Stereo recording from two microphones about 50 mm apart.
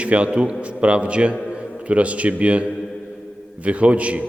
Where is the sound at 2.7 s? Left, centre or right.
Centre.